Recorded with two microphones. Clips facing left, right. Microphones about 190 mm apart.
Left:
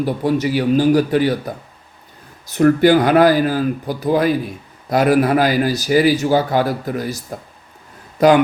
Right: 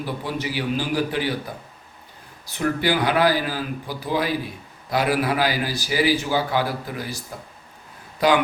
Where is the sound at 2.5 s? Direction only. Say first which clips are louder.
Left 10 dB; 50° left (ahead or behind).